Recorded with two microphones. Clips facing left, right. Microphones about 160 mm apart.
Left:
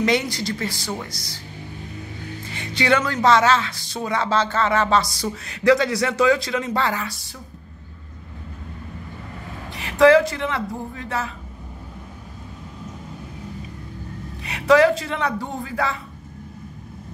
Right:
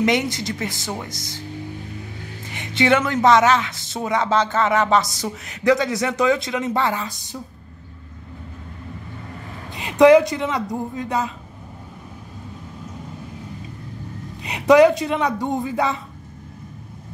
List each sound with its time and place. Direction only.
0.0 s speech: 20° right (ahead or behind)
2.5 s speech: 20° right (ahead or behind)
9.8 s speech: 20° right (ahead or behind)
14.4 s speech: 20° right (ahead or behind)